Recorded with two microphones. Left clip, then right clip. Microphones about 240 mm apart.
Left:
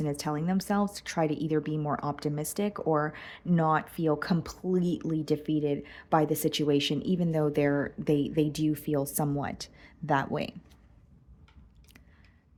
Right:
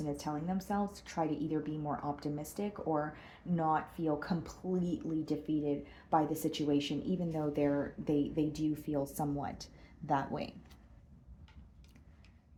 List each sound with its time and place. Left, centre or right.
0.0 s a woman's voice: left